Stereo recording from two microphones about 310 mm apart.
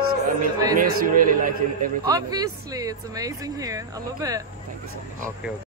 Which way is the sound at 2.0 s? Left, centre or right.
Centre.